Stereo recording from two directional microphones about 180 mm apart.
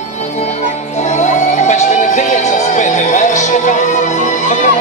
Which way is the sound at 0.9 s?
40° left (ahead or behind).